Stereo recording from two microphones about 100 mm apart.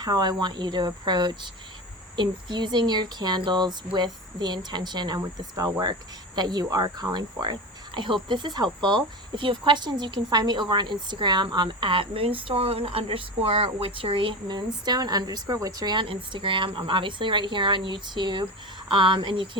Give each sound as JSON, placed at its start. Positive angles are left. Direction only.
{"t": 0.0, "sound": "a woman's voice", "side_deg": -45}